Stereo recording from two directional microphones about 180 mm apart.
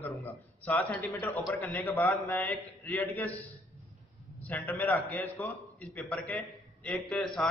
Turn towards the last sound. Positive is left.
turn(degrees=0)  # may be behind; listen again after turning